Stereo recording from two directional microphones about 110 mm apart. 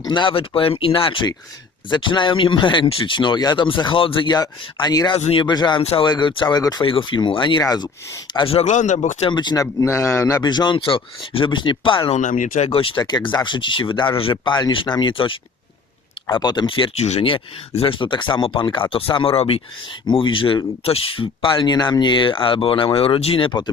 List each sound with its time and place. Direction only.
0.0 s speech: 45° left (ahead or behind)
5.1 s speech: 60° left (ahead or behind)
5.5 s speech: 40° left (ahead or behind)
6.8 s speech: 50° left (ahead or behind)
7.6 s speech: 35° left (ahead or behind)
8.4 s speech: 75° left (ahead or behind)
9.3 s speech: 40° left (ahead or behind)
9.8 s a man's voice: 30° left (ahead or behind)
10.4 s speech: 40° left (ahead or behind)
10.8 s speech: 55° left (ahead or behind)
12.1 s speech: 80° left; by 16.9 s 50° left (ahead or behind)
17.0 s speech: 80° left
17.2 s speech: 60° left (ahead or behind)